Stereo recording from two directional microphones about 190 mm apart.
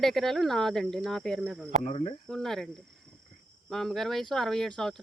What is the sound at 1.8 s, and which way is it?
Speech, 35° left (ahead or behind).